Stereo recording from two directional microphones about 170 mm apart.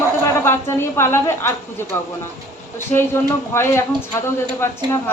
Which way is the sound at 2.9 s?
15° left (ahead or behind).